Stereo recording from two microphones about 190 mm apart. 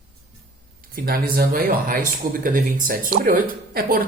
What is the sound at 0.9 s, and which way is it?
Speech, 50° right (ahead or behind).